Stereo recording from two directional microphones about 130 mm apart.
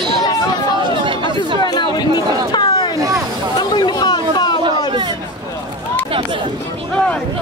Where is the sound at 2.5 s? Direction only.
35° left (ahead or behind).